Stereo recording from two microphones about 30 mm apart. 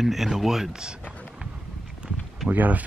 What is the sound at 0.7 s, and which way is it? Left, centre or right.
Speech, right.